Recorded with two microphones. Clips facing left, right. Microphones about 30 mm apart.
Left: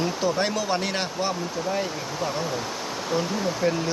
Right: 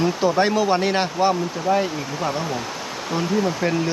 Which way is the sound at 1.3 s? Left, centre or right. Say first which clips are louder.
Right 6 dB; right.